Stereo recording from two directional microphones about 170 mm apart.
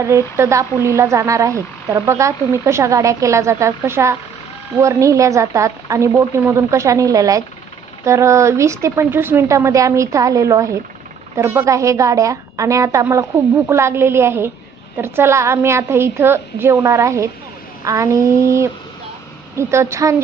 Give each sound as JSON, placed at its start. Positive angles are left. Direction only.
{"t": 0.1, "sound": "a woman's voice", "side_deg": -15}